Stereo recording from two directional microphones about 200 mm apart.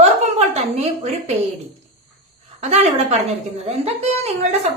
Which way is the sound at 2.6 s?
30° right (ahead or behind).